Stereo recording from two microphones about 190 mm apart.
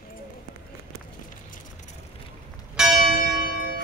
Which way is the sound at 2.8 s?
5° right (ahead or behind).